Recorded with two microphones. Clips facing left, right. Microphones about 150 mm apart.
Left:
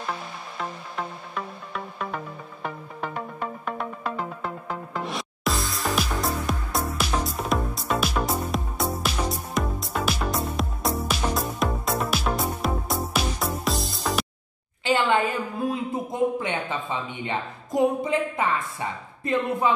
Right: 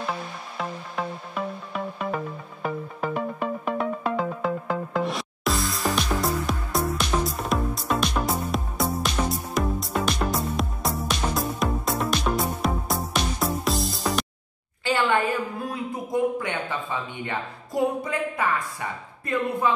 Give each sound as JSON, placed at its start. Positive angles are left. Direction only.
{"t": 0.6, "sound": "music", "side_deg": -5}
{"t": 4.9, "sound": "music", "side_deg": 0}
{"t": 14.9, "sound": "a sound", "side_deg": 20}